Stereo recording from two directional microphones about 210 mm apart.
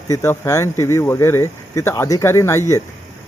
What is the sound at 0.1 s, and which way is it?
Speech, 15° left (ahead or behind).